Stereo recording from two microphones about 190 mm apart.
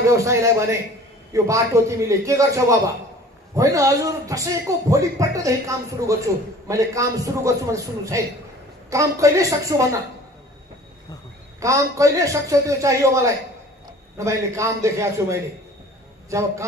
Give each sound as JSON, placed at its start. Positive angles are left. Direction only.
{"t": 0.0, "sound": "speech", "side_deg": -15}
{"t": 11.6, "sound": "a man's voice", "side_deg": -15}